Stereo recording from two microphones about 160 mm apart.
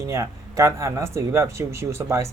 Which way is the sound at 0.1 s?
20° right (ahead or behind).